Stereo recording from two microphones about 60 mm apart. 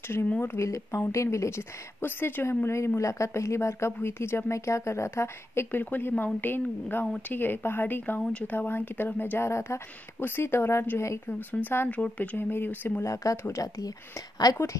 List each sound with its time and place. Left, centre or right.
0.6 s speech: left
2.6 s speech: left
5.7 s a woman's voice: left
8.3 s speech: left
8.5 s a woman's voice: left
9.5 s speech: left
11.2 s a woman's voice: left
11.9 s speech: left
12.4 s a woman's voice: left
13.0 s speech: left
13.6 s speech: left